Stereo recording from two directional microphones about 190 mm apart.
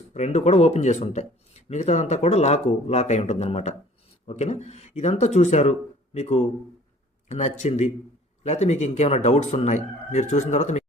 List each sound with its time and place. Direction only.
0.1 s speech: 35° left (ahead or behind)